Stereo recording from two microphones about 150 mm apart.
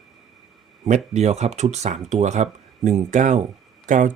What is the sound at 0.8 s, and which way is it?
Speech, 50° right (ahead or behind).